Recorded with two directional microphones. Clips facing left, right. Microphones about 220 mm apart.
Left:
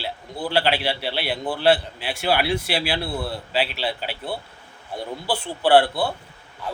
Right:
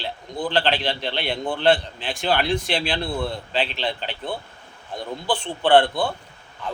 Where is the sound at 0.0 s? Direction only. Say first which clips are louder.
Right 1 dB; 10° left (ahead or behind).